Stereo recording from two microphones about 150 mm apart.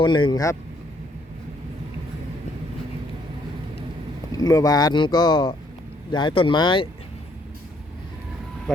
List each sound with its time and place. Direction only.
0.0 s speech: 30° left (ahead or behind)
4.4 s speech: 25° left (ahead or behind)